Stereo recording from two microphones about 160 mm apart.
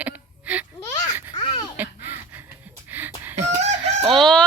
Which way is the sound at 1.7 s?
10° right (ahead or behind).